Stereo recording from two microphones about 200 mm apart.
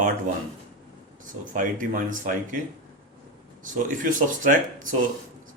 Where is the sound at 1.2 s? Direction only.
40° right (ahead or behind).